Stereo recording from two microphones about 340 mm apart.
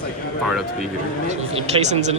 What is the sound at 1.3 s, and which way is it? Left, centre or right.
Speech, centre.